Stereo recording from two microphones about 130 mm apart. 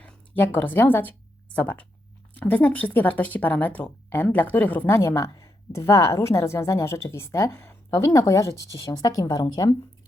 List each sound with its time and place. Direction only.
0.0 s speech: 15° left (ahead or behind)
4.9 s speech: 25° left (ahead or behind)